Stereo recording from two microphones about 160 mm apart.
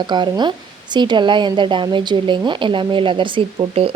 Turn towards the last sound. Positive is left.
turn(degrees=-35)  # may be behind; listen again after turning